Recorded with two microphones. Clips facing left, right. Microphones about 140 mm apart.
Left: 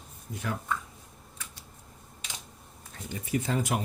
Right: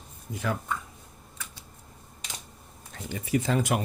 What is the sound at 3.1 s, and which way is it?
Speech, 90° right.